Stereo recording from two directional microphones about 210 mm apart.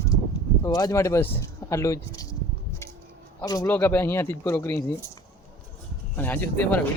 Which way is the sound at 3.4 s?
15° left (ahead or behind).